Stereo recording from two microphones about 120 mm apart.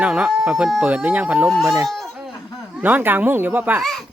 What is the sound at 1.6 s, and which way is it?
Speech, 25° right (ahead or behind).